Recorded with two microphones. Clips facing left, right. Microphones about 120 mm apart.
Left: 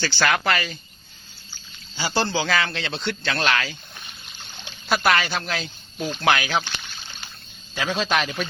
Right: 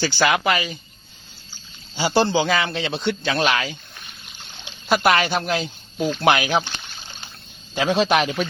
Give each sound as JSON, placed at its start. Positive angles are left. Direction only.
{"t": 0.0, "sound": "a man's voice", "side_deg": -15}
{"t": 2.0, "sound": "a man's voice", "side_deg": -25}
{"t": 4.9, "sound": "speech", "side_deg": -20}
{"t": 7.8, "sound": "speech", "side_deg": -25}